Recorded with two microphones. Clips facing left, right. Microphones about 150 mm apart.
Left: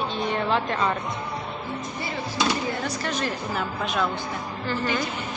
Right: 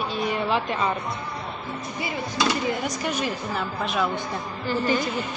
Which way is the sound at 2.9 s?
10° right (ahead or behind).